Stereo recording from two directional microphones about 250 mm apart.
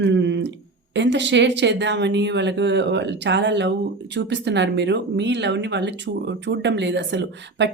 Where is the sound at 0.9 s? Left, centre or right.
Right.